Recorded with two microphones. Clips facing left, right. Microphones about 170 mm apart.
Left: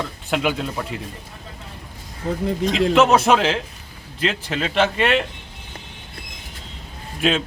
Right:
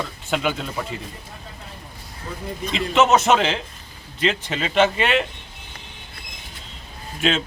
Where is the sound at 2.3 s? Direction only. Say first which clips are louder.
Left 10 dB; 90° left.